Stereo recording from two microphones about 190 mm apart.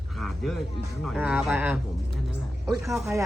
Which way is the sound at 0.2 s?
Centre (ahead or behind).